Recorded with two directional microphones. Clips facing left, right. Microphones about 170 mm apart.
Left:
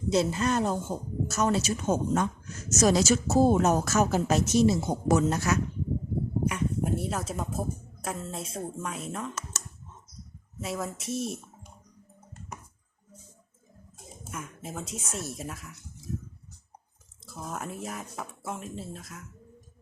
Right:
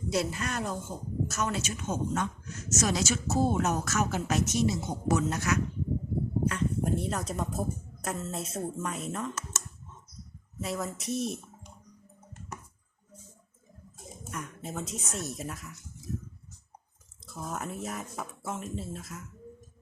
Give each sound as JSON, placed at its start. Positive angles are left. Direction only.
{"t": 0.1, "sound": "speech", "side_deg": 25}
{"t": 6.4, "sound": "speech", "side_deg": 10}
{"t": 10.6, "sound": "speech", "side_deg": 0}
{"t": 14.3, "sound": "speech", "side_deg": 5}
{"t": 17.2, "sound": "speech", "side_deg": 0}